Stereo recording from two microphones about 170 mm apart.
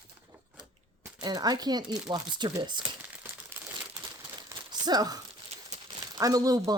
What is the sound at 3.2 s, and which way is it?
Crumpling, 15° right (ahead or behind).